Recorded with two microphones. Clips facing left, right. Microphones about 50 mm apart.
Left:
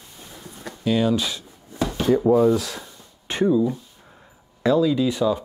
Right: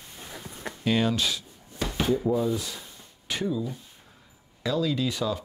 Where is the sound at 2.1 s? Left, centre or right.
Left.